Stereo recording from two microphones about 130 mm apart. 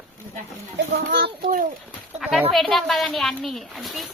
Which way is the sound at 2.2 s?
Centre (ahead or behind).